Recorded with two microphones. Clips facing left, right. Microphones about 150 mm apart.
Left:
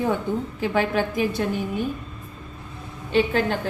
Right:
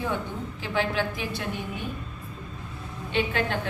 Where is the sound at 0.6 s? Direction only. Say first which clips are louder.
Left 4 dB; 45° left (ahead or behind).